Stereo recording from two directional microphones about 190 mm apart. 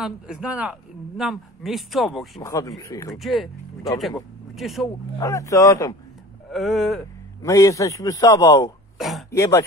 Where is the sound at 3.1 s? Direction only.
Centre (ahead or behind).